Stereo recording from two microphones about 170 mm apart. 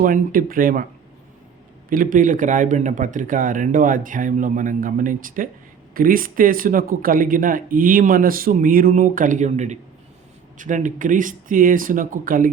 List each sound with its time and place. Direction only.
0.0 s speech: 55° right (ahead or behind)
1.9 s speech: 55° right (ahead or behind)